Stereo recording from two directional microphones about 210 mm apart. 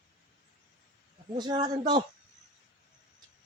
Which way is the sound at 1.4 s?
20° right (ahead or behind).